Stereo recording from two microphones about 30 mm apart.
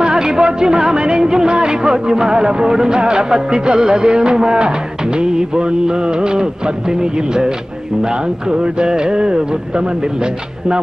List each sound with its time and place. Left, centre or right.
0.0 s speech: right